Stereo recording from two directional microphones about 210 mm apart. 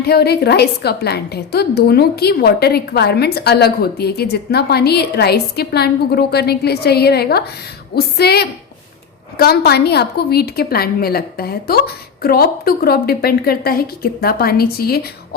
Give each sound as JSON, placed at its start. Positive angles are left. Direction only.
{"t": 0.0, "sound": "a woman's voice", "side_deg": 50}